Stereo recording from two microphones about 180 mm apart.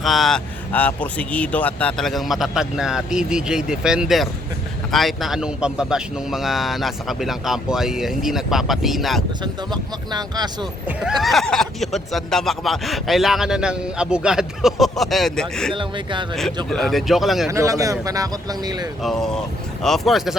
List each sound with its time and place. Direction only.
0.0 s speech: centre (ahead or behind)
9.4 s speech: 25° right (ahead or behind)
10.8 s speech: centre (ahead or behind)
15.7 s speech: 25° right (ahead or behind)
16.6 s speech: 5° left (ahead or behind)
17.5 s speech: 20° right (ahead or behind)
19.0 s speech: centre (ahead or behind)